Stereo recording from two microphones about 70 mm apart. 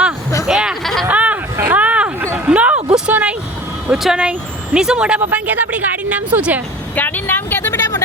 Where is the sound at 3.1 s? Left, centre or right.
Right.